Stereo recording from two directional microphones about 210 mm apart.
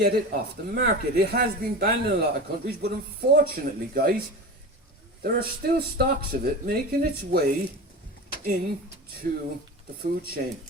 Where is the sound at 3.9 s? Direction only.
45° right (ahead or behind).